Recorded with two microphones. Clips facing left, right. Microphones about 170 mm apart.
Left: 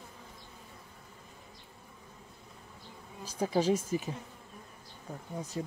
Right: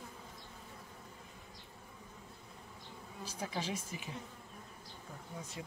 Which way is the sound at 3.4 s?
35° left (ahead or behind).